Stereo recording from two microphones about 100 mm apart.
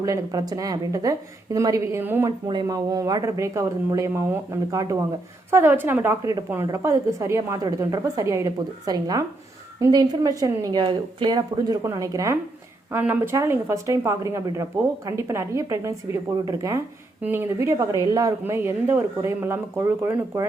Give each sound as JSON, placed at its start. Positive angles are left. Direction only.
{"t": 0.0, "sound": "speech", "side_deg": -35}
{"t": 2.6, "sound": "speech", "side_deg": -35}
{"t": 5.5, "sound": "speech", "side_deg": -25}
{"t": 12.9, "sound": "speech", "side_deg": -20}
{"t": 17.2, "sound": "speech", "side_deg": -20}
{"t": 17.7, "sound": "speech", "side_deg": -30}
{"t": 18.4, "sound": "speech", "side_deg": -25}